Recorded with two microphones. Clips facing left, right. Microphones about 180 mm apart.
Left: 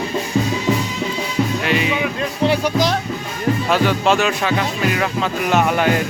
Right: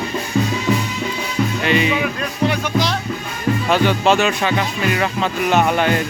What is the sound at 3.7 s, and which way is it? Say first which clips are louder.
Speech: right 2 dB; centre (ahead or behind).